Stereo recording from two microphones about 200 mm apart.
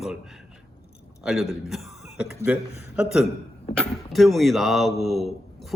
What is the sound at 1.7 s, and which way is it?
A man's voice, centre (ahead or behind).